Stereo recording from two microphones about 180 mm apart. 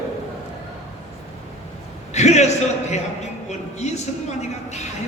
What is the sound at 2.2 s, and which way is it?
Speech, 40° left (ahead or behind).